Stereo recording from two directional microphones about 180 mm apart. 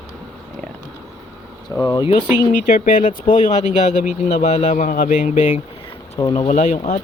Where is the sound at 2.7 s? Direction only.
50° left (ahead or behind).